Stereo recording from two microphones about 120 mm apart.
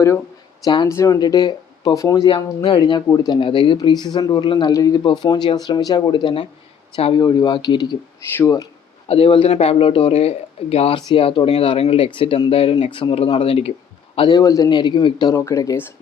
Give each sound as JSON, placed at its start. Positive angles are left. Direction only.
{"t": 0.6, "sound": "speech", "side_deg": 40}
{"t": 0.9, "sound": "speech", "side_deg": 25}
{"t": 2.6, "sound": "speech", "side_deg": 45}
{"t": 7.2, "sound": "speech", "side_deg": 30}
{"t": 8.4, "sound": "speech", "side_deg": 25}
{"t": 9.0, "sound": "speech", "side_deg": 55}
{"t": 14.2, "sound": "speech", "side_deg": 35}
{"t": 15.4, "sound": "speech", "side_deg": 25}